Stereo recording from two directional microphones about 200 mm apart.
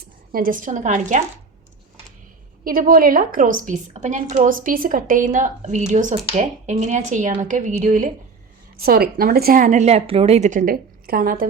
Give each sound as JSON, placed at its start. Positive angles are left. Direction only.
{"t": 0.3, "sound": "a woman's voice", "side_deg": -45}
{"t": 2.6, "sound": "a woman's voice", "side_deg": -45}
{"t": 8.8, "sound": "a woman's voice", "side_deg": -50}